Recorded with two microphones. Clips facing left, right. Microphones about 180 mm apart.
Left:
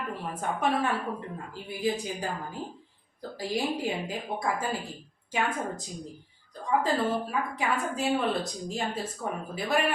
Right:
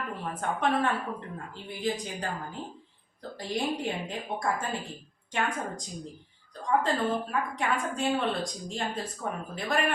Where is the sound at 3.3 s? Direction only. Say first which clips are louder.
Left 1 dB; 5° left (ahead or behind).